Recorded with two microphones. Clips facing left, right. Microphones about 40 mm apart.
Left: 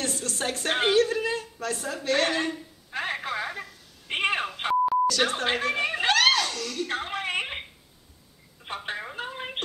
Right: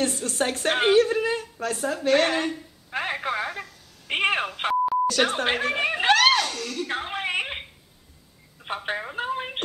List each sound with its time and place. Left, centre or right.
0.0 s a woman's voice: right
1.8 s a woman's voice: centre
2.9 s telephone: centre
4.1 s speech: centre
5.0 s a sound: right
8.7 s speech: centre
9.1 s telephone: centre